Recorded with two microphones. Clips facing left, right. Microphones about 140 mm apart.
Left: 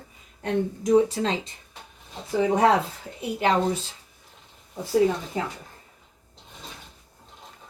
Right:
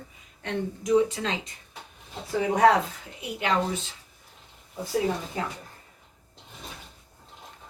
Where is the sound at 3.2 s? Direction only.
35° left (ahead or behind).